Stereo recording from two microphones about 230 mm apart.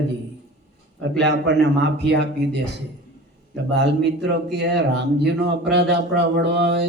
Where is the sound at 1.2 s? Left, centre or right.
Right.